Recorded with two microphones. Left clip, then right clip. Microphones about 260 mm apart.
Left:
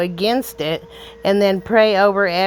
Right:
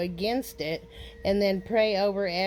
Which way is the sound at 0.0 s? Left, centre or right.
Centre.